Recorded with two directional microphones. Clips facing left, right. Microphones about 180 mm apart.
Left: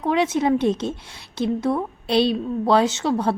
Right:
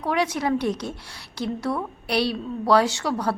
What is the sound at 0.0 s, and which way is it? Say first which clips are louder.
A woman's voice: left 4 dB; 20° left (ahead or behind).